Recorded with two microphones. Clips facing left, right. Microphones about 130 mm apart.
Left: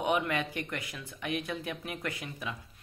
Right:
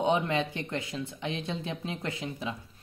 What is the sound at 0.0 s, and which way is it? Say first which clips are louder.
Speech: right 3 dB; 25° right (ahead or behind).